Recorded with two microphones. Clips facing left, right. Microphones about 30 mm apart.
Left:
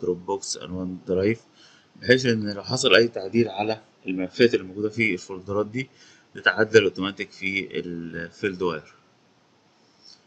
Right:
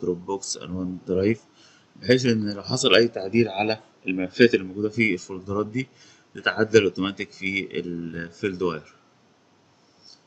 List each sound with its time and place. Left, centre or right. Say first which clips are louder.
0.0 s speech: left 1 dB; centre
3.1 s speech: right 1 dB; centre
4.3 s speech: right 2 dB; centre
5.2 s speech: left 1 dB; centre